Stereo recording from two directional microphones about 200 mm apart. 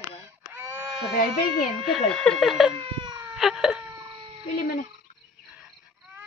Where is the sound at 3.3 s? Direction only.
Centre (ahead or behind).